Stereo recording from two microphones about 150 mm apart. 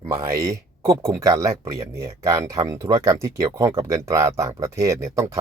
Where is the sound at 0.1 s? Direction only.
20° right (ahead or behind).